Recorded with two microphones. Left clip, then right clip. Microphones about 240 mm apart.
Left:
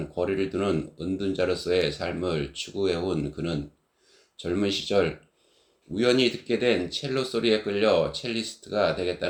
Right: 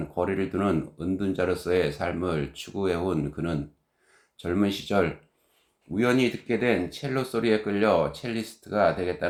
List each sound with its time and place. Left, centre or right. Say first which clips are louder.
0.1 s speech: left 1 dB; right